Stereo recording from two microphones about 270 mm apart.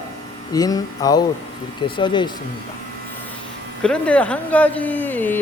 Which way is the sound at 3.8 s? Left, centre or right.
Centre.